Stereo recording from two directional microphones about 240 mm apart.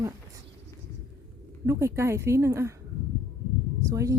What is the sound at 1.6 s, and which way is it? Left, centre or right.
A woman's voice, centre.